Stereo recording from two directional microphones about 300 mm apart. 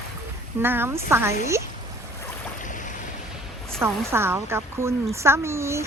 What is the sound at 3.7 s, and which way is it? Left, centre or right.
A woman's voice, centre.